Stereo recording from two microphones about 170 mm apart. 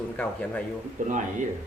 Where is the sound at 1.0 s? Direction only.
50° right (ahead or behind).